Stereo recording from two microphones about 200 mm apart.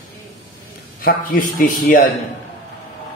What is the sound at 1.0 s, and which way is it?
A man's voice, 45° left (ahead or behind).